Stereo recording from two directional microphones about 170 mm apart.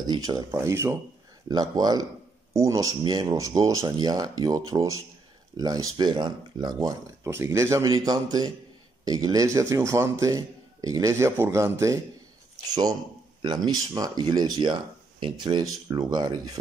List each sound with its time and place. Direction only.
0.0 s speech: 25° right (ahead or behind)
13.4 s speech: 25° right (ahead or behind)